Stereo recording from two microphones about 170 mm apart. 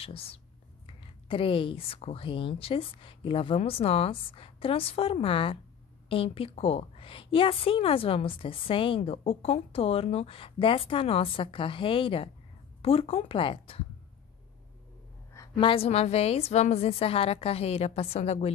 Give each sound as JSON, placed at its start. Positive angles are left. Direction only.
{"t": 0.0, "sound": "a woman's voice", "side_deg": 35}
{"t": 15.5, "sound": "a woman's voice", "side_deg": 30}